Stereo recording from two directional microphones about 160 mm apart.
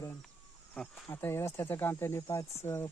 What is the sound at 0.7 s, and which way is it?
Speech, 5° left (ahead or behind).